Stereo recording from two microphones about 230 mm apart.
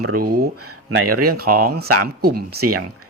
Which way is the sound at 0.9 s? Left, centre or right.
Right.